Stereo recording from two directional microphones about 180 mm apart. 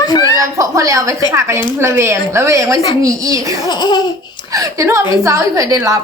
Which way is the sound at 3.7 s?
25° left (ahead or behind).